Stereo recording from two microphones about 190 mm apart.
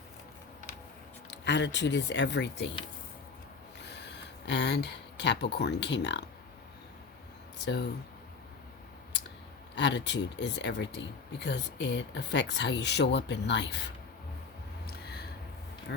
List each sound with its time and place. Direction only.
1.3 s speech: 65° left (ahead or behind)
3.8 s speech: 60° left (ahead or behind)
7.6 s speech: 65° left (ahead or behind)
9.7 s speech: 65° left (ahead or behind)
15.9 s speech: 65° left (ahead or behind)